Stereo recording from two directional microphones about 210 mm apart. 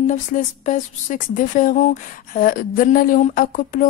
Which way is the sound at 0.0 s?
40° left (ahead or behind).